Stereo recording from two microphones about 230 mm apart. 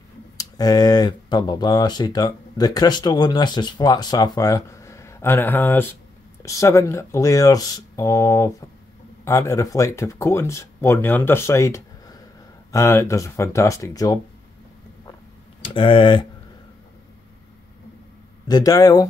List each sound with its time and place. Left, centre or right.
0.4 s speech: centre
15.6 s speech: left
18.5 s speech: centre